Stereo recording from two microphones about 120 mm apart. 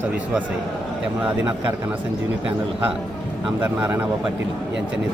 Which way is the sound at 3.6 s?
15° right (ahead or behind).